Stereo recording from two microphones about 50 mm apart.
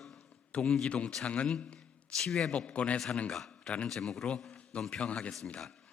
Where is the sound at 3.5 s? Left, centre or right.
Centre.